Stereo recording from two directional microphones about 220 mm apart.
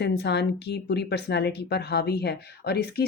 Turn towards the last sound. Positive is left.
turn(degrees=45)  # may be behind; listen again after turning